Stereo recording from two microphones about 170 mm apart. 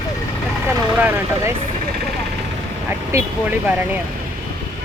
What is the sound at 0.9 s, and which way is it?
Speech, 10° right (ahead or behind).